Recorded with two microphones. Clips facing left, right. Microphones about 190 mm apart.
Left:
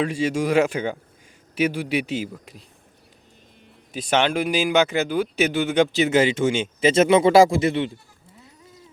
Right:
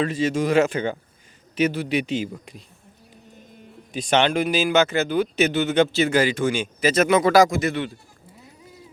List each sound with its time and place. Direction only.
0.0 s speech: 10° left (ahead or behind)
3.9 s speech: 5° left (ahead or behind); by 7.9 s 25° left (ahead or behind)